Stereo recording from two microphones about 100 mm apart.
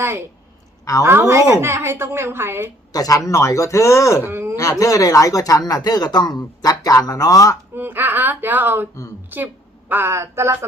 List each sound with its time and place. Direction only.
1.0 s speech: 25° right (ahead or behind)
2.9 s speech: 35° left (ahead or behind)
4.3 s a sound: 20° right (ahead or behind)
4.5 s speech: 35° left (ahead or behind)
7.8 s speech: 20° right (ahead or behind)